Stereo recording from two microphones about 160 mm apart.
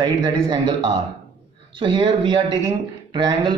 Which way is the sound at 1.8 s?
30° right (ahead or behind).